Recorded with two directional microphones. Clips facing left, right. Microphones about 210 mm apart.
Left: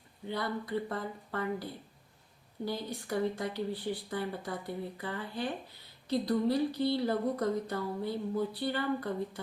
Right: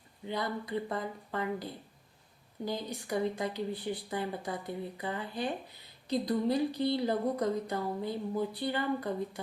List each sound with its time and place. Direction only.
0.3 s speech: 15° right (ahead or behind)
2.6 s speech: 15° right (ahead or behind)